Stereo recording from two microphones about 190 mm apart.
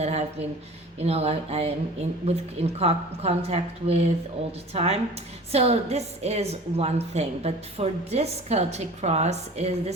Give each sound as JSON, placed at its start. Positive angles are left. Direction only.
{"t": 0.0, "sound": "a woman's voice", "side_deg": -35}